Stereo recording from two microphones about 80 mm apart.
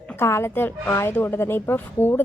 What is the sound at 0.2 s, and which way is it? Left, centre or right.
A woman's voice, left.